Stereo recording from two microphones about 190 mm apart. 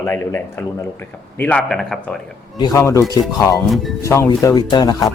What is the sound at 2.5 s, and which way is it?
Speech, 20° left (ahead or behind).